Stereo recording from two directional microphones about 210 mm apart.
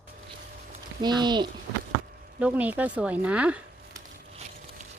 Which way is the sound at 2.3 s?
5° right (ahead or behind).